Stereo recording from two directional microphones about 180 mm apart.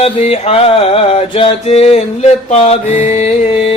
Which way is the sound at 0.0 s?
35° left (ahead or behind).